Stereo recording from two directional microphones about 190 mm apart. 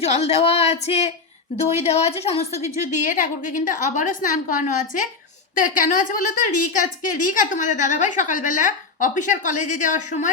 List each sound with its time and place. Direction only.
0.0 s a woman's voice: 35° left (ahead or behind)